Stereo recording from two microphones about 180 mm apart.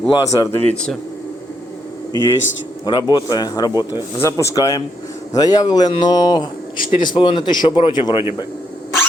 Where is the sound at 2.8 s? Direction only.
20° left (ahead or behind).